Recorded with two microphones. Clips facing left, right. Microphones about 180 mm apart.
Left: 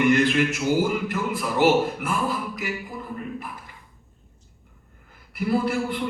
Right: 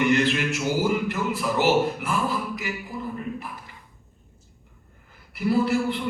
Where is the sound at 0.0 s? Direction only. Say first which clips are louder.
Left 2 dB; 50° left (ahead or behind).